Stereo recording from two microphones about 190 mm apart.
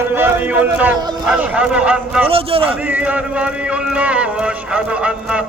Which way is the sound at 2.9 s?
5° right (ahead or behind).